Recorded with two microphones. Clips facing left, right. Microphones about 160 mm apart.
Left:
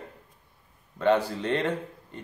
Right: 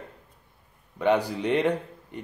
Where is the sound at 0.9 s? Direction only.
15° right (ahead or behind).